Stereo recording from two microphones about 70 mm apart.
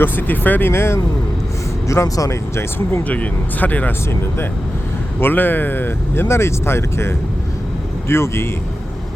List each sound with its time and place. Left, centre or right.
0.0 s speech: left
0.7 s speech: left
1.9 s speech: left
2.6 s speech: left
3.1 s speech: left
5.2 s speech: left